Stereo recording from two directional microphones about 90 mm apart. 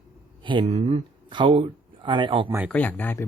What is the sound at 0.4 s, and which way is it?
Speech, 60° right (ahead or behind).